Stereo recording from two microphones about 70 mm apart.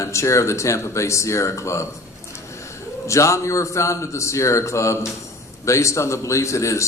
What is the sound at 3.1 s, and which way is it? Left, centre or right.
A man's voice, left.